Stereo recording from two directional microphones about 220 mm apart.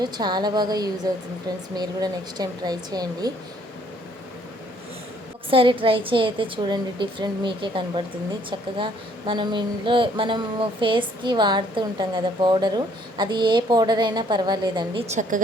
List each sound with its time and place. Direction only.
0.0 s a woman's voice: 20° right (ahead or behind)
5.5 s a woman's voice: 25° right (ahead or behind)
15.1 s a woman's voice: 35° right (ahead or behind)